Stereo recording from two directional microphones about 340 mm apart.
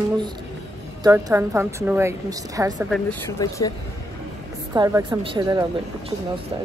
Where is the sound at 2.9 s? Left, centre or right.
Centre.